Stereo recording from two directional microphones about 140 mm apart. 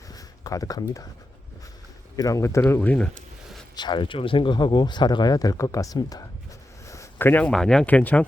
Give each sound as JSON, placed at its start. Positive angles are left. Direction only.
{"t": 0.1, "sound": "a sound", "side_deg": 25}
{"t": 2.1, "sound": "speech", "side_deg": 25}
{"t": 3.8, "sound": "speech", "side_deg": 35}